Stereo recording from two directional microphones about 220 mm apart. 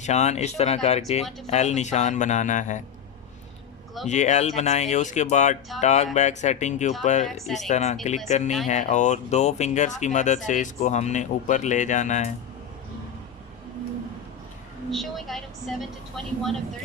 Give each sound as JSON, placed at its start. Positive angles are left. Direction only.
{"t": 0.0, "sound": "speech", "side_deg": 30}
{"t": 4.0, "sound": "speech", "side_deg": 30}
{"t": 7.3, "sound": "speech", "side_deg": 0}
{"t": 7.7, "sound": "speech", "side_deg": 30}
{"t": 14.8, "sound": "a woman's voice", "side_deg": 0}